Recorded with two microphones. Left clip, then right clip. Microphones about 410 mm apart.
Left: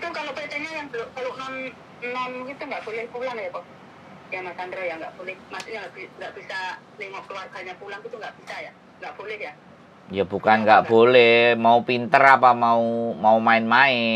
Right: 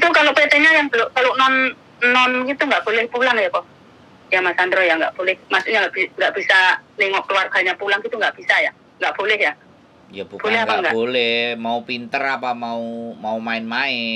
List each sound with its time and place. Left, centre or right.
0.0 s telephone: right
4.3 s speech: right
11.0 s speech: left